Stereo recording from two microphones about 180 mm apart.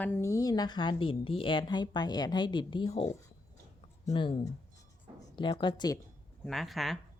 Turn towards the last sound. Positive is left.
turn(degrees=0)  # may be behind; listen again after turning